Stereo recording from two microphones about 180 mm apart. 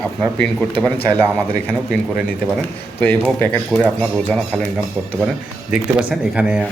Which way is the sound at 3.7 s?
5° left (ahead or behind).